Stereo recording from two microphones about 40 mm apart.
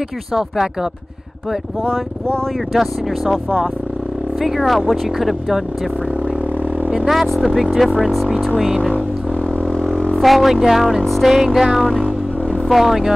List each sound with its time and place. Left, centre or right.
0.3 s music: centre
1.9 s speech: left
2.7 s speech: centre
4.4 s speech: centre
7.2 s speech: centre
8.5 s music: centre
8.9 s didgeridoo: left
10.2 s speech: centre
11.3 s music: centre
12.6 s speech: centre